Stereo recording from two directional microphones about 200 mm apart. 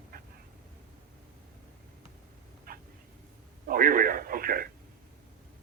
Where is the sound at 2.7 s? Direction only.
50° right (ahead or behind).